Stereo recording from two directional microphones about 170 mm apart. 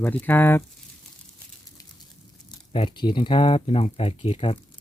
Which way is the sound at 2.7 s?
30° left (ahead or behind).